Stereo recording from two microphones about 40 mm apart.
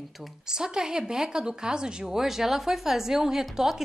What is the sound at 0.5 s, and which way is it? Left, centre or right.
Speech, centre.